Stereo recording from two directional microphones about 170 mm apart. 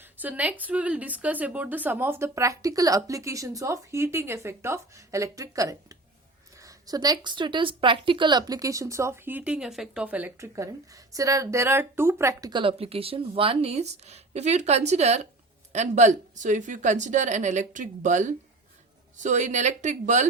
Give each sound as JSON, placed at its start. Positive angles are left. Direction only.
{"t": 0.0, "sound": "a woman's voice", "side_deg": -10}